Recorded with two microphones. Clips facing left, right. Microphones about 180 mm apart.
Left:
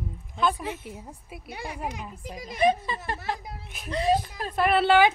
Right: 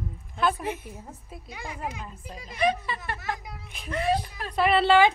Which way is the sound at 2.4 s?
45° left (ahead or behind).